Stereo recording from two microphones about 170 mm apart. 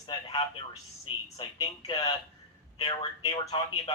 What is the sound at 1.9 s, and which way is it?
Speech, 25° left (ahead or behind).